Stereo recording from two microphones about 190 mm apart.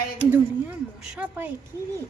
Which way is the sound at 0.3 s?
10° right (ahead or behind).